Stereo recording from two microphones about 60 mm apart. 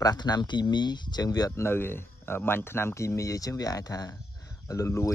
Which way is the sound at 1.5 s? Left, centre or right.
Left.